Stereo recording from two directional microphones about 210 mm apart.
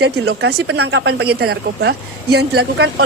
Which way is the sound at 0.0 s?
50° right (ahead or behind).